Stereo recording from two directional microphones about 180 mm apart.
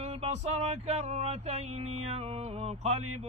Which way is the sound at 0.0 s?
35° right (ahead or behind).